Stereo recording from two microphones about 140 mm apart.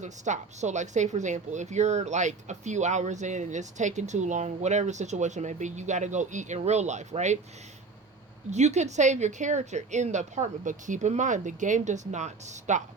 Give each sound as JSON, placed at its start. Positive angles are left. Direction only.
{"t": 0.0, "sound": "a woman's voice", "side_deg": -55}
{"t": 8.4, "sound": "a woman's voice", "side_deg": -55}